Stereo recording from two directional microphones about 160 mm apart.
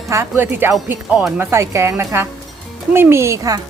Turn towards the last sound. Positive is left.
turn(degrees=-20)  # may be behind; listen again after turning